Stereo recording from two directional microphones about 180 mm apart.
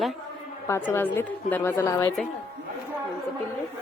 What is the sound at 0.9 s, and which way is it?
A woman's voice, 10° left (ahead or behind).